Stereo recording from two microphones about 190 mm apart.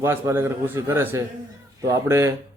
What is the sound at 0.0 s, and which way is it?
A man's voice, 10° right (ahead or behind).